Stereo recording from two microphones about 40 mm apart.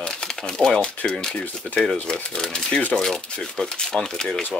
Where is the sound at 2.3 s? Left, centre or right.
Centre.